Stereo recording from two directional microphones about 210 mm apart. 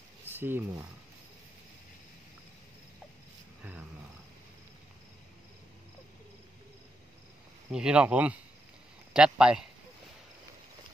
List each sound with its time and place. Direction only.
0.3 s speech: 10° right (ahead or behind)
7.7 s speech: 5° right (ahead or behind)